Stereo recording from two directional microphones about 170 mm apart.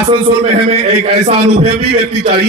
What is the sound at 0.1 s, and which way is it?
A man's voice, 35° right (ahead or behind).